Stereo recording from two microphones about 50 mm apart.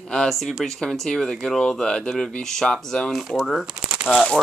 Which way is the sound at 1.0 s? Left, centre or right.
Centre.